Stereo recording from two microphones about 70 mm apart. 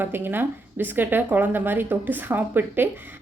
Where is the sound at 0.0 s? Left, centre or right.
Right.